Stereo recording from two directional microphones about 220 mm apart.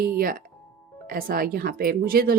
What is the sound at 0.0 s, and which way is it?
A woman's voice, 40° right (ahead or behind).